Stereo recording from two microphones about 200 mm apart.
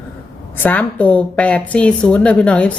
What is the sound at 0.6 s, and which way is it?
A woman's voice, 5° left (ahead or behind).